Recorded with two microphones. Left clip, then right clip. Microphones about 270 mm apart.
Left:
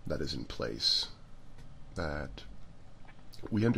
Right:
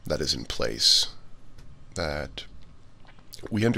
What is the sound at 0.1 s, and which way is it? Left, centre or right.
Speech, right.